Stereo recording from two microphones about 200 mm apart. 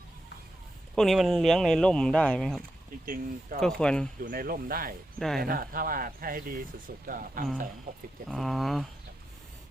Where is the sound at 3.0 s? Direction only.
45° right (ahead or behind).